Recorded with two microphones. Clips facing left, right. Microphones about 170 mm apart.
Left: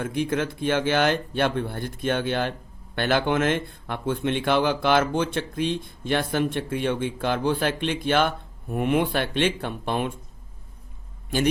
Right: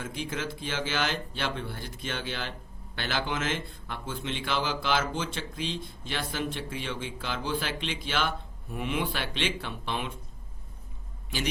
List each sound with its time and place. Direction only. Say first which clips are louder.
0.0 s speech: left 9 dB; 55° left (ahead or behind)